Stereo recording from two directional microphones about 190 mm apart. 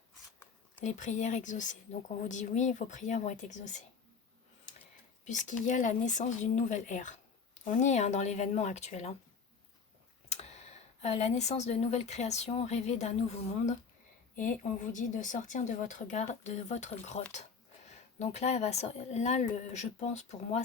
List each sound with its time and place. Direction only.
0.9 s speech: 40° left (ahead or behind)
5.5 s speech: 40° left (ahead or behind)
10.2 s speech: 35° left (ahead or behind)